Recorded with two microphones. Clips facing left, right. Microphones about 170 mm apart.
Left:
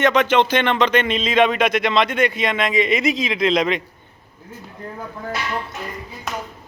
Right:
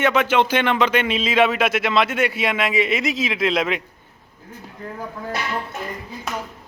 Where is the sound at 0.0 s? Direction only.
5° right (ahead or behind).